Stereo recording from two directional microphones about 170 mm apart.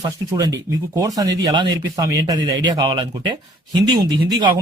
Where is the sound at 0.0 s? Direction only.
20° right (ahead or behind).